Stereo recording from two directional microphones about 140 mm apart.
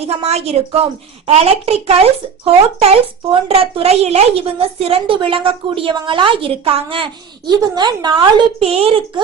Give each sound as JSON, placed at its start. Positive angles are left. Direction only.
{"t": 0.0, "sound": "a woman's voice", "side_deg": -50}
{"t": 8.6, "sound": "speech", "side_deg": -45}